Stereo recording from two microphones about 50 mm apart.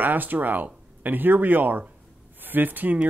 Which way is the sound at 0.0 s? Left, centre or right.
Right.